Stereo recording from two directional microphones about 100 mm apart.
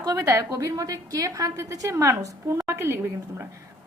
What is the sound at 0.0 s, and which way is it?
A woman's voice, 35° right (ahead or behind).